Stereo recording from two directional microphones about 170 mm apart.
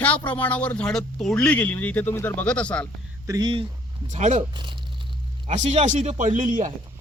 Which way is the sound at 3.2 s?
25° right (ahead or behind).